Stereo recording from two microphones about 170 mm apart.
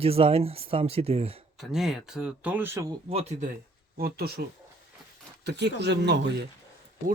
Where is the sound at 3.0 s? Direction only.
40° right (ahead or behind).